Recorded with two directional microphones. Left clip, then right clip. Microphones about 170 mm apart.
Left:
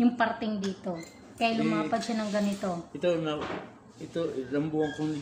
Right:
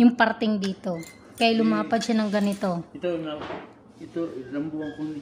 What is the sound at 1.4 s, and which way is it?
A woman's voice, 80° right.